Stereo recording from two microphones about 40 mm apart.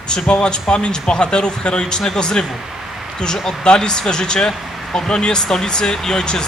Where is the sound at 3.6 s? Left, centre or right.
Centre.